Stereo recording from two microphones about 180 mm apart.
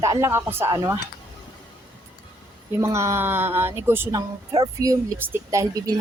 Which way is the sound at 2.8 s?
15° right (ahead or behind).